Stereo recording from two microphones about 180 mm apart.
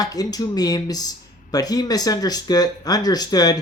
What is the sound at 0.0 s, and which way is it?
Speech, 20° left (ahead or behind).